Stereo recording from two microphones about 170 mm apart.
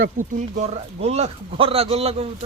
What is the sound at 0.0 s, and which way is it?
Speech, 45° right (ahead or behind).